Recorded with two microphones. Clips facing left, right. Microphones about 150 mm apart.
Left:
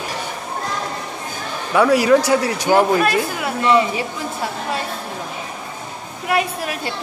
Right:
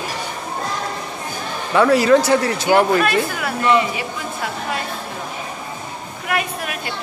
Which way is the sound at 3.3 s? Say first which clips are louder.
Even; 20° left (ahead or behind).